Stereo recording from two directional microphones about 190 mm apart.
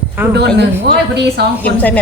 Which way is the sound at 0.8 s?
60° right (ahead or behind).